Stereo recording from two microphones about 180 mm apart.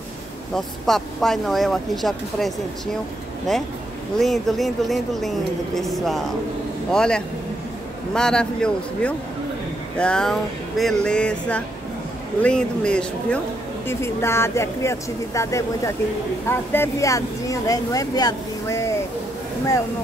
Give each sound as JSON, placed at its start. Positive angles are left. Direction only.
{"t": 0.6, "sound": "speech", "side_deg": 0}
{"t": 4.2, "sound": "speech", "side_deg": 0}